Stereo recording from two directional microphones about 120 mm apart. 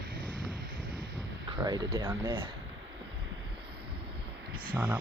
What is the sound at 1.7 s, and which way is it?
Speech, 35° right (ahead or behind).